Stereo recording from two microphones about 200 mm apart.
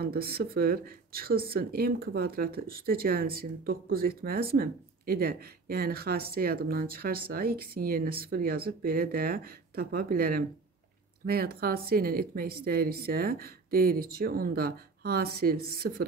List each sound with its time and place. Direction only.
0.0 s speech: 50° right (ahead or behind)